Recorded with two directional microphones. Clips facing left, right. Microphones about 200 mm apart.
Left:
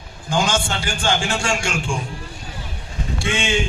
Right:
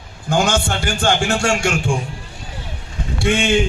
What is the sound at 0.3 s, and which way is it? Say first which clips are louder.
A man's voice: right 3 dB; 55° right (ahead or behind).